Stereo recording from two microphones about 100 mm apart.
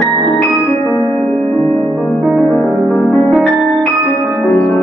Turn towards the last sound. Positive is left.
turn(degrees=0)  # may be behind; listen again after turning